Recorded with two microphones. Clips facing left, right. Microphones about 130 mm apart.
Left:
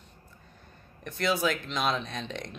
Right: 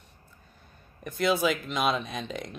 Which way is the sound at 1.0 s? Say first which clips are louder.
Right 3 dB; 5° right (ahead or behind).